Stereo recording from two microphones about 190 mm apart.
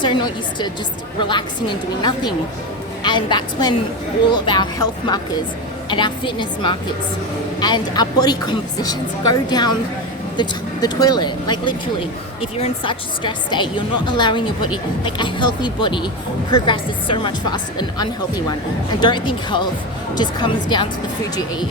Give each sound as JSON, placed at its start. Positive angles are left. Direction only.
{"t": 0.0, "sound": "a woman's voice", "side_deg": 25}
{"t": 3.0, "sound": "a woman's voice", "side_deg": 25}